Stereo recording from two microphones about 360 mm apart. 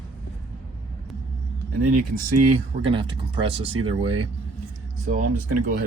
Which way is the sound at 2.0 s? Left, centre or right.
Right.